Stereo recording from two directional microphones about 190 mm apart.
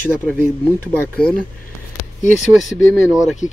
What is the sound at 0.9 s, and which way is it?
Speech, 5° left (ahead or behind).